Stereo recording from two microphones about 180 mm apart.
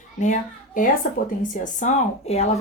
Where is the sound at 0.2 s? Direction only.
45° left (ahead or behind).